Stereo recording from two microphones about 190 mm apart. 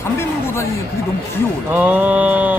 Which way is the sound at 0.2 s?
15° left (ahead or behind).